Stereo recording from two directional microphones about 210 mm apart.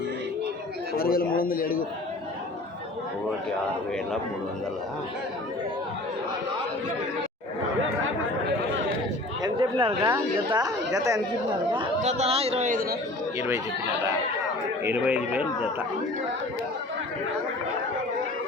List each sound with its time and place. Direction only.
0.9 s a man's voice: 45° left (ahead or behind)
9.4 s chatter: 25° right (ahead or behind)
10.0 s speech: 15° right (ahead or behind)
11.7 s speech: 30° right (ahead or behind)
14.8 s speech: 5° right (ahead or behind)